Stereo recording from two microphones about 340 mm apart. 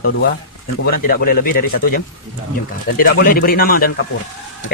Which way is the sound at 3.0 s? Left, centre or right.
Left.